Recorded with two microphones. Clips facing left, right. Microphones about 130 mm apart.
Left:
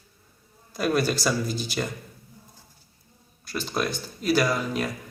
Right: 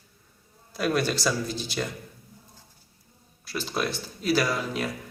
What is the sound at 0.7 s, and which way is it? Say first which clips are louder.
Speech: left 2 dB; centre (ahead or behind).